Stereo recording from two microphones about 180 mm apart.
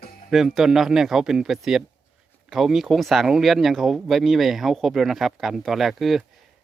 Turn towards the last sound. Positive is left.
turn(degrees=0)  # may be behind; listen again after turning